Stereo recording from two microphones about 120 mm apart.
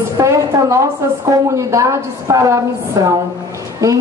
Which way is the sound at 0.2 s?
25° right (ahead or behind).